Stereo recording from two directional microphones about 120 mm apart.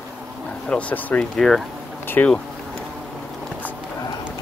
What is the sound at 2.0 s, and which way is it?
Speech, 15° left (ahead or behind).